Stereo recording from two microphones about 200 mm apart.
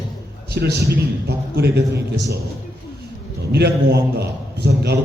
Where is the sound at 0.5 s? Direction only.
55° right (ahead or behind).